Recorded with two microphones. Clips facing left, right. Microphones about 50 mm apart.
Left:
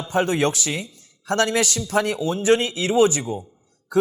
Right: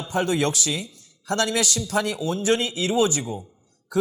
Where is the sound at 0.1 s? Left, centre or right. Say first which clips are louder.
Left 2 dB; left.